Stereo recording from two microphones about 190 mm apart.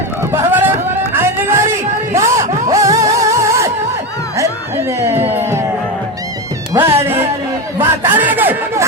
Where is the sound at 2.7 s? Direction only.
15° right (ahead or behind).